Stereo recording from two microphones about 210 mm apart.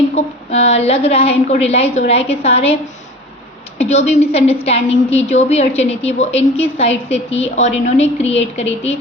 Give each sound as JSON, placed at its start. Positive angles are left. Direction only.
{"t": 0.2, "sound": "a sound", "side_deg": 30}
{"t": 0.5, "sound": "a woman's voice", "side_deg": 30}
{"t": 3.8, "sound": "a woman's voice", "side_deg": 30}